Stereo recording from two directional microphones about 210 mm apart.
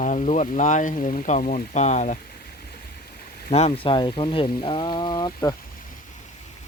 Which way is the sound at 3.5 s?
30° left (ahead or behind).